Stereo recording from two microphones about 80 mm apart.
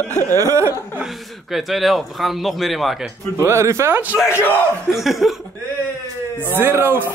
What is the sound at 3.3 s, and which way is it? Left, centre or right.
Speech, right.